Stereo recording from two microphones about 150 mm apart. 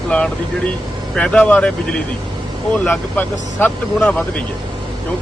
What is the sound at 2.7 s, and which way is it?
Speech, 10° left (ahead or behind).